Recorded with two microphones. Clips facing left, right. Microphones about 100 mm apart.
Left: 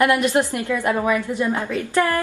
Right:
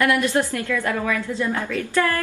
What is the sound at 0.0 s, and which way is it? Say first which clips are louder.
A woman's voice: left 2 dB; 20° left (ahead or behind).